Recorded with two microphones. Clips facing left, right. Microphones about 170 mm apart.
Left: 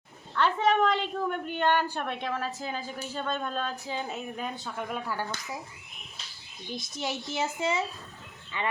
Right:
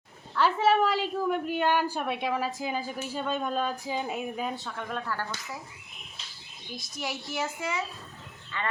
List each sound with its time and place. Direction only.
0.3 s a woman's voice: 5° right (ahead or behind)
4.8 s speech: 10° left (ahead or behind)
6.7 s a child's voice: 25° left (ahead or behind)